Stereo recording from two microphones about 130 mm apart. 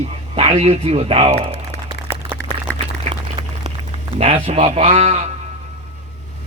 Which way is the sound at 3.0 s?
55° right (ahead or behind).